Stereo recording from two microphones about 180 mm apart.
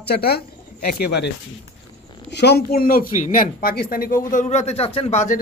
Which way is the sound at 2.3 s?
65° left (ahead or behind).